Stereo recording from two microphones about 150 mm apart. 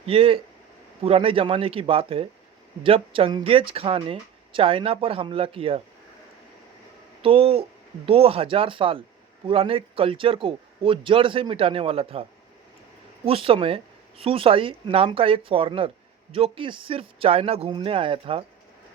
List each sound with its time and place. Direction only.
0.0 s speech: 40° right (ahead or behind)
7.2 s speech: 40° right (ahead or behind)
13.2 s speech: 40° right (ahead or behind)